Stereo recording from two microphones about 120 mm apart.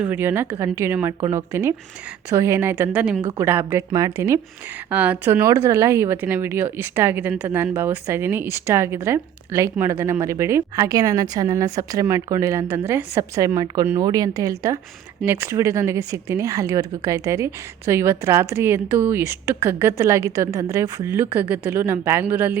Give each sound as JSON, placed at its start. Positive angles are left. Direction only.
{"t": 0.0, "sound": "a woman's voice", "side_deg": -15}
{"t": 4.9, "sound": "a woman's voice", "side_deg": -15}